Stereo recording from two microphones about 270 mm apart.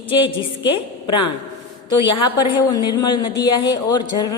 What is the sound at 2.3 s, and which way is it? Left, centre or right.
A woman's voice, centre.